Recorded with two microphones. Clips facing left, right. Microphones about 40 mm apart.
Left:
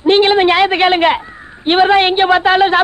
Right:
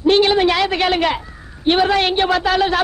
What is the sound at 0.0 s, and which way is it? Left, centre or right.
A man's voice, left.